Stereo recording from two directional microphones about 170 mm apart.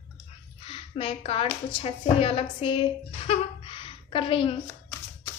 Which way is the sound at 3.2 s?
35° left (ahead or behind).